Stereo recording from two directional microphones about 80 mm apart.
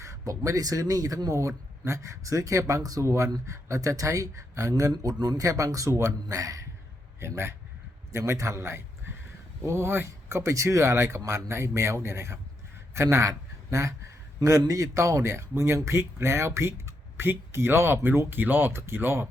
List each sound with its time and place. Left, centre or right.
0.0 s speech: right
7.2 s speech: right